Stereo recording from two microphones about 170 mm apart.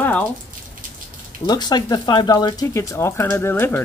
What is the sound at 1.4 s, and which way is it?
Speech, 25° left (ahead or behind).